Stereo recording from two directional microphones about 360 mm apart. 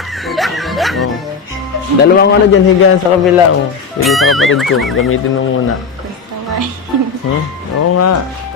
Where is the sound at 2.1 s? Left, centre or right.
Left.